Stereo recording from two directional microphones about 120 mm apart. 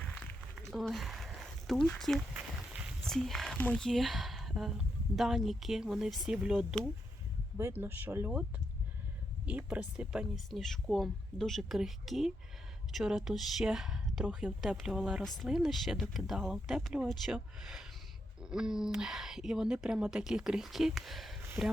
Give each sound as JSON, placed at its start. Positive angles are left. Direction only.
{"t": 0.5, "sound": "a sound", "side_deg": 0}
{"t": 3.1, "sound": "speech", "side_deg": 5}
{"t": 7.5, "sound": "speech", "side_deg": -15}